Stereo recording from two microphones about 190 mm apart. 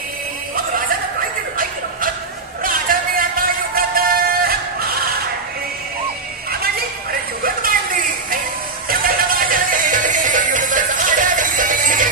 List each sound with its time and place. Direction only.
2.6 s music: 45° right (ahead or behind)
6.5 s a sound: 50° right (ahead or behind)
8.8 s music: 50° right (ahead or behind)